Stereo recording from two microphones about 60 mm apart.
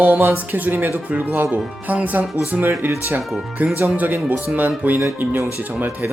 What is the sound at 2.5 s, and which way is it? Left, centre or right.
Speech, right.